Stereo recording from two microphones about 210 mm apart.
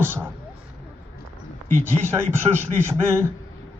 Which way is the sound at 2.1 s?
10° right (ahead or behind).